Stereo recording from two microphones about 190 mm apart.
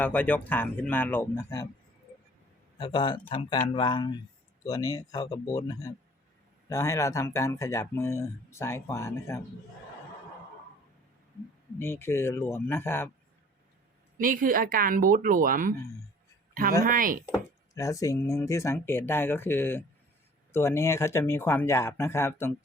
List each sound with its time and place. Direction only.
0.0 s speech: 10° left (ahead or behind)
2.7 s speech: 25° left (ahead or behind)
11.8 s speech: 10° left (ahead or behind)
14.2 s speech: 45° right (ahead or behind)
16.8 s speech: 45° right (ahead or behind)
17.3 s speech: 15° left (ahead or behind)